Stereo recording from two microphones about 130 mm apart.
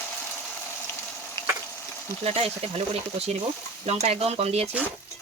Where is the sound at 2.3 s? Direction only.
50° right (ahead or behind).